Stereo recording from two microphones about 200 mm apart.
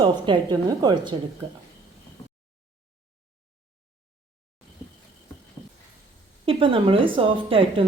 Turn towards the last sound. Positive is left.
turn(degrees=-25)  # may be behind; listen again after turning